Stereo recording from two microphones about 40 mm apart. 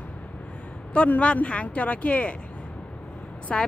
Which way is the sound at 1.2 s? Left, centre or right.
Left.